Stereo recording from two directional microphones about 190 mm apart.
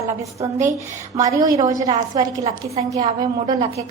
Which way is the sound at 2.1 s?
20° right (ahead or behind).